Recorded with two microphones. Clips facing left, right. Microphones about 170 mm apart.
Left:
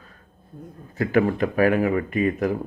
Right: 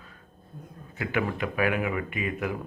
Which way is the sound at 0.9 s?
40° left (ahead or behind).